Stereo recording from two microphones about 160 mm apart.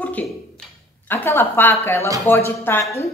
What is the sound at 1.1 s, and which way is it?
A woman's voice, 15° left (ahead or behind).